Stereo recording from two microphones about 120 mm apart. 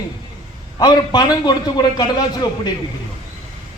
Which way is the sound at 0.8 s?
35° left (ahead or behind).